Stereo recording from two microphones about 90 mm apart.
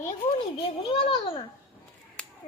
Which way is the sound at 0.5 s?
75° left (ahead or behind).